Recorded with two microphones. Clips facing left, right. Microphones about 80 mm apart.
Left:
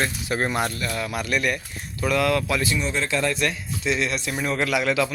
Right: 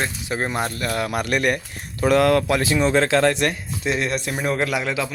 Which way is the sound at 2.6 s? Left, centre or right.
Right.